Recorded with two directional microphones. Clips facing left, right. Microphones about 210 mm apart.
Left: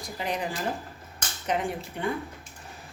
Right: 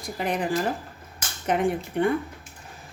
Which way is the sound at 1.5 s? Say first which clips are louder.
Right 5 dB; 55° right (ahead or behind).